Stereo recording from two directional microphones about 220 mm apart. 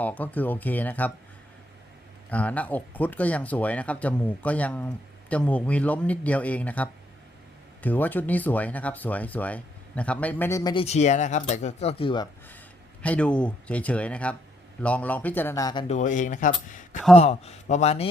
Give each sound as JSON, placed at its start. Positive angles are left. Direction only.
{"t": 0.0, "sound": "speech", "side_deg": 5}
{"t": 2.3, "sound": "speech", "side_deg": 5}
{"t": 13.0, "sound": "speech", "side_deg": 5}
{"t": 16.0, "sound": "a man's voice", "side_deg": 35}